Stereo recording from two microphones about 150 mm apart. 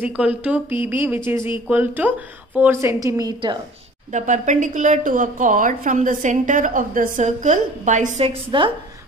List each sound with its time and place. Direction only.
0.0 s a woman's voice: 10° right (ahead or behind); by 3.5 s 25° right (ahead or behind)
4.1 s a woman's voice: 55° right (ahead or behind); by 8.7 s 35° right (ahead or behind)